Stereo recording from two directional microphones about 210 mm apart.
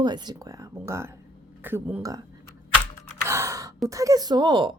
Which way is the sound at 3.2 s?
15° right (ahead or behind).